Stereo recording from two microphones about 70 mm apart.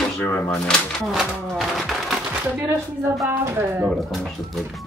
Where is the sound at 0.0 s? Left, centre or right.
Centre.